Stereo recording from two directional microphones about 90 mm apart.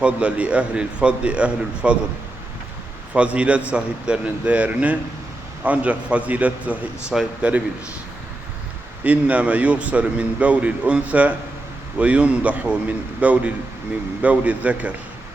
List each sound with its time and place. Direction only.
0.0 s speech: 15° right (ahead or behind)
3.1 s speech: 15° right (ahead or behind)
7.1 s speech: 5° right (ahead or behind)
9.0 s speech: 15° right (ahead or behind)